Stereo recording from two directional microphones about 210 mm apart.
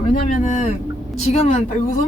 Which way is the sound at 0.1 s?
35° left (ahead or behind).